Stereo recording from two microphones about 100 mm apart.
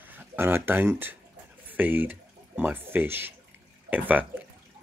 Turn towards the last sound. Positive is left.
turn(degrees=-15)  # may be behind; listen again after turning